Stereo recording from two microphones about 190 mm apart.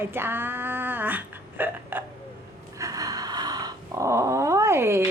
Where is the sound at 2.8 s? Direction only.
20° right (ahead or behind).